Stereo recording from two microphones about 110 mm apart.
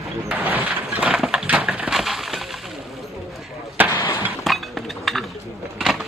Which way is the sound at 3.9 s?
25° left (ahead or behind).